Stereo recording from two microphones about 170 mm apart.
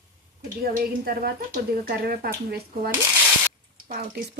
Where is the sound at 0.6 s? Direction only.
60° right (ahead or behind).